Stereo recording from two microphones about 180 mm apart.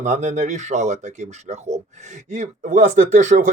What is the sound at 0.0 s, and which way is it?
Speech, 40° right (ahead or behind).